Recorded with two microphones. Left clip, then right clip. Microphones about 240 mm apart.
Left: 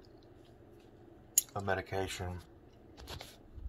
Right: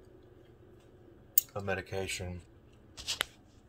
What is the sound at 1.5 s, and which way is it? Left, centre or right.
Speech, centre.